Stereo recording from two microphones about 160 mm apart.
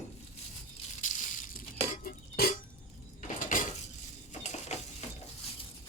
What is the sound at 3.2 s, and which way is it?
Dishes, 55° left (ahead or behind).